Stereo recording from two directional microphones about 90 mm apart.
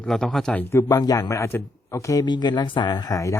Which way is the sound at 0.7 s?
30° left (ahead or behind).